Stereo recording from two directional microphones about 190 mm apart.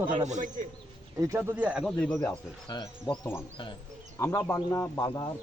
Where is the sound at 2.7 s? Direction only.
20° left (ahead or behind).